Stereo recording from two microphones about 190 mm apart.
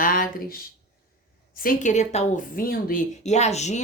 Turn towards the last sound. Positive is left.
turn(degrees=35)  # may be behind; listen again after turning